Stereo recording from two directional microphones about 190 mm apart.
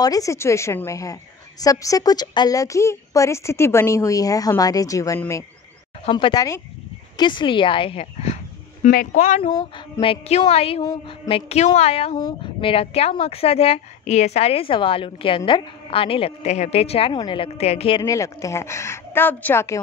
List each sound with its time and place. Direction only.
0.0 s a woman's voice: 20° left (ahead or behind)
6.0 s speech: 25° left (ahead or behind)
8.8 s speech: 45° left (ahead or behind)
9.4 s speech: 25° left (ahead or behind)
18.0 s a woman's voice: 15° left (ahead or behind)